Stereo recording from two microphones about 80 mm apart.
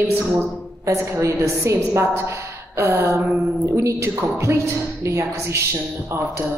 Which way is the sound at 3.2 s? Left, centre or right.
Right.